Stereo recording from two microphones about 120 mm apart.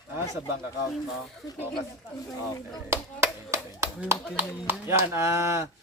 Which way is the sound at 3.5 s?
20° right (ahead or behind).